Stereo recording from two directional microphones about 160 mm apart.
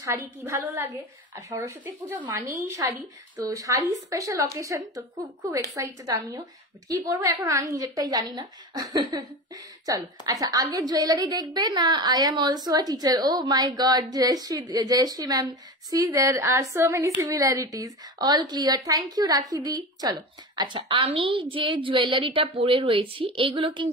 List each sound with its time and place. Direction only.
0.0 s a woman's voice: 20° right (ahead or behind)
6.0 s a woman's voice: 20° right (ahead or behind)